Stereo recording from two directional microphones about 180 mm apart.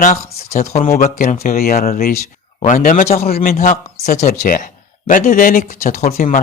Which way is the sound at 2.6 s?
45° left (ahead or behind).